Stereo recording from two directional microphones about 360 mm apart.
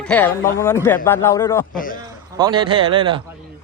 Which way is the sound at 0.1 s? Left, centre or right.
Centre.